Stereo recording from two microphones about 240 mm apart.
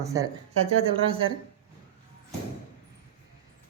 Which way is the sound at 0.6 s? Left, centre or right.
Right.